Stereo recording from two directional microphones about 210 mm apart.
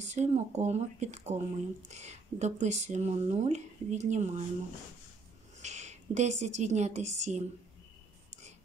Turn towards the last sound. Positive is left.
turn(degrees=-35)  # may be behind; listen again after turning